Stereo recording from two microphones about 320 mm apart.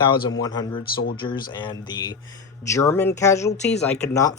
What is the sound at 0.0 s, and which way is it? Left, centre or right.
Speech, centre.